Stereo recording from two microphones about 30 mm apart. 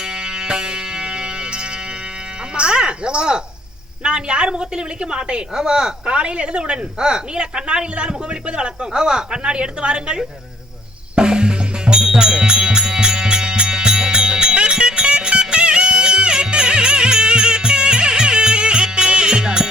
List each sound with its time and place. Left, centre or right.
0.0 s music: right
2.6 s a sound: right
4.0 s a woman's voice: right
6.1 s a woman's voice: right
11.1 s music: right